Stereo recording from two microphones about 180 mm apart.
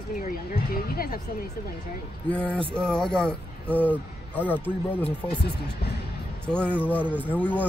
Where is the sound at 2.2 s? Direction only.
5° left (ahead or behind).